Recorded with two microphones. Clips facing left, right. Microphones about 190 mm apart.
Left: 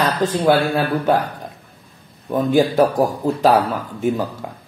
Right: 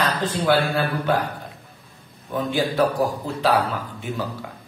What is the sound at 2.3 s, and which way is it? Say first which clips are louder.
A man's voice: left 7 dB; 45° left (ahead or behind).